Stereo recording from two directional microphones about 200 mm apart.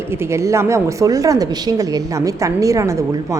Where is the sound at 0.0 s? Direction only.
10° right (ahead or behind).